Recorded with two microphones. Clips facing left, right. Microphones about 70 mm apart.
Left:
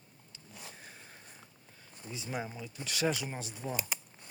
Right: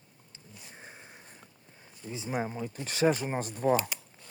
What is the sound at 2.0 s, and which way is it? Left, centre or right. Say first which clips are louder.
Speech: right 6 dB; right.